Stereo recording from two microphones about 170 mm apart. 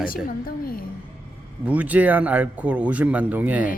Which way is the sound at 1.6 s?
10° right (ahead or behind).